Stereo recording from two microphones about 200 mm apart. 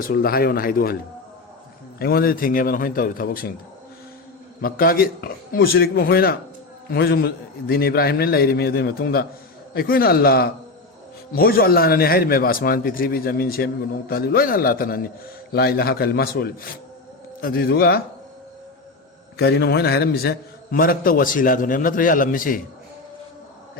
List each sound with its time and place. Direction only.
0.0 s a man's voice: 50° left (ahead or behind)
2.0 s a man's voice: 50° left (ahead or behind)
4.6 s a man's voice: 45° left (ahead or behind)
19.4 s a man's voice: 55° left (ahead or behind)